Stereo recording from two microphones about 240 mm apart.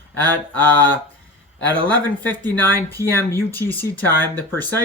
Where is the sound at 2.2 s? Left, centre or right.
Centre.